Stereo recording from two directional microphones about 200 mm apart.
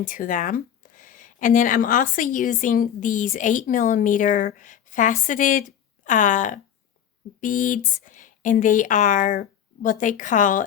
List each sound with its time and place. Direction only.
0.0 s speech: 40° left (ahead or behind)